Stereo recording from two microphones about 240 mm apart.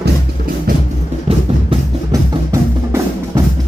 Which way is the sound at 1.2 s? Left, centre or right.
Centre.